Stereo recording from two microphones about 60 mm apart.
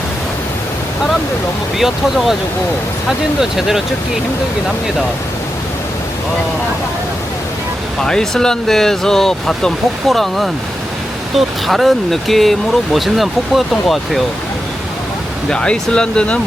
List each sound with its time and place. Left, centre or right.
1.8 s speech: centre
8.0 s speech: centre
15.4 s speech: centre